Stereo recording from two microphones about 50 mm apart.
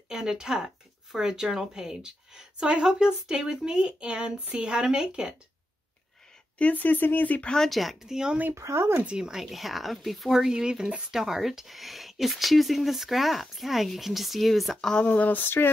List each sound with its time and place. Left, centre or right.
0.1 s a woman's voice: centre
6.6 s speech: left
7.4 s speech: centre
8.5 s speech: right
9.0 s speech: centre
10.3 s a woman's voice: centre
15.0 s speech: left
15.4 s a sound: left